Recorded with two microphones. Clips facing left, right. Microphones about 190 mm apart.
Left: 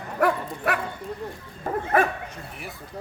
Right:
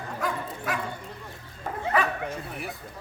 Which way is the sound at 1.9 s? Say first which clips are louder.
Left 4 dB; 50° left (ahead or behind).